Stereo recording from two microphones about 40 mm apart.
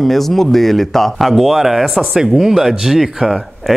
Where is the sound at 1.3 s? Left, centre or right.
Centre.